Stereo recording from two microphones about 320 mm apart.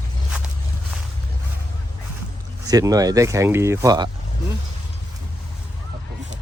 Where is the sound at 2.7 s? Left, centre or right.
Centre.